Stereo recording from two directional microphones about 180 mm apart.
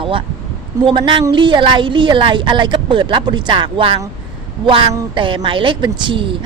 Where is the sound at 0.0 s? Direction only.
30° right (ahead or behind).